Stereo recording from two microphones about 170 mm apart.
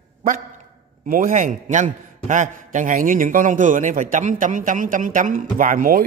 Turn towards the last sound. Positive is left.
turn(degrees=-55)  # may be behind; listen again after turning